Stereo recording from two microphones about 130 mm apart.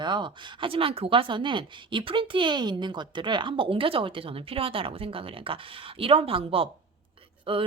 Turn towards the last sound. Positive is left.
turn(degrees=-45)  # may be behind; listen again after turning